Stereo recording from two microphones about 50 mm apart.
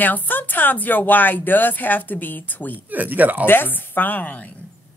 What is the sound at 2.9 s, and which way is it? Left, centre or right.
Speech, right.